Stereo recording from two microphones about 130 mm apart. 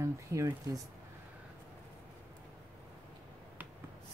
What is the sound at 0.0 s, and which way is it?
Speech, 25° right (ahead or behind).